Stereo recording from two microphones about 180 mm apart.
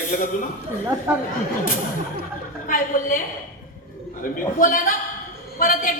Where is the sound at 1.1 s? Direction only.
15° right (ahead or behind).